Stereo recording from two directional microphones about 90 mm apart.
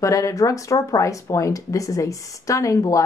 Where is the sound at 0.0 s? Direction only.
35° left (ahead or behind).